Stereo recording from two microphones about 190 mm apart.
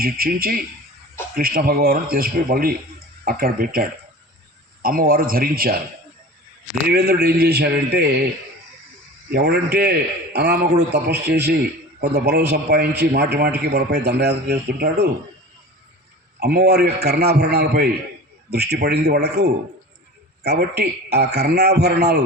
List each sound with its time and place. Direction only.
0.0 s speech: 50° right (ahead or behind)
6.8 s a man's voice: 55° right (ahead or behind)
9.3 s a man's voice: 60° right (ahead or behind)
16.4 s a man's voice: 55° right (ahead or behind)